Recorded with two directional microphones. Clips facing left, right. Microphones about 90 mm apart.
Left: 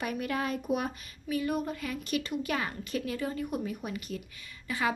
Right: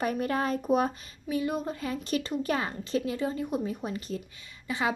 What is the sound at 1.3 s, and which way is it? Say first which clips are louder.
Speech: right 1 dB; 25° right (ahead or behind).